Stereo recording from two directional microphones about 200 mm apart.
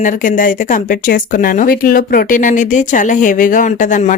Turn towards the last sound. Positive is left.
turn(degrees=40)  # may be behind; listen again after turning